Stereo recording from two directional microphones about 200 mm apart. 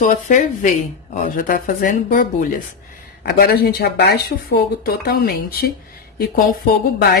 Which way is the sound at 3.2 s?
55° left (ahead or behind).